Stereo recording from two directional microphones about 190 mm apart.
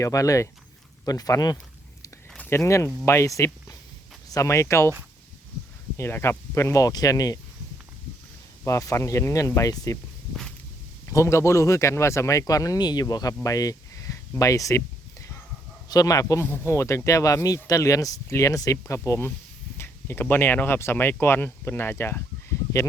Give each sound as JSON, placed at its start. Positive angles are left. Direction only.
{"t": 0.0, "sound": "speech", "side_deg": 15}
{"t": 6.0, "sound": "speech", "side_deg": 10}
{"t": 8.6, "sound": "speech", "side_deg": 15}
{"t": 11.0, "sound": "speech", "side_deg": 15}